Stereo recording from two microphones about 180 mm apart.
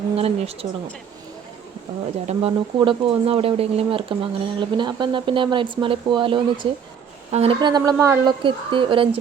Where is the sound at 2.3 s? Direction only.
35° right (ahead or behind); by 8.3 s 15° right (ahead or behind).